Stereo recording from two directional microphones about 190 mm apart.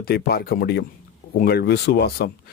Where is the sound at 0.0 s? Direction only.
55° left (ahead or behind).